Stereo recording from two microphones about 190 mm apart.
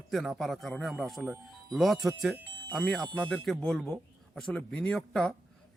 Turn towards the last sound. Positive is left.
turn(degrees=5)  # may be behind; listen again after turning